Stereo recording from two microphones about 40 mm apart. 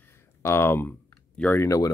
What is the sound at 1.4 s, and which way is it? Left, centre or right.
Speech, left.